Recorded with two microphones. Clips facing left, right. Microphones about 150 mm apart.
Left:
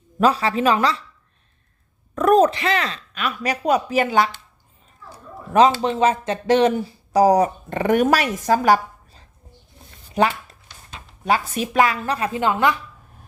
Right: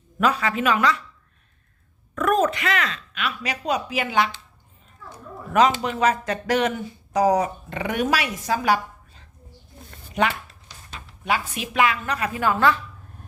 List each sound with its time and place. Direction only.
0.2 s speech: 30° left (ahead or behind)
2.1 s speech: 35° left (ahead or behind)
5.0 s a sound: 30° left (ahead or behind)
5.8 s speech: 25° left (ahead or behind); by 9.2 s 45° left (ahead or behind)
10.2 s speech: 35° left (ahead or behind); by 12.8 s 15° left (ahead or behind)